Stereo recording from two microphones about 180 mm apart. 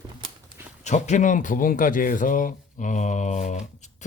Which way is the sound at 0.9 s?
40° left (ahead or behind).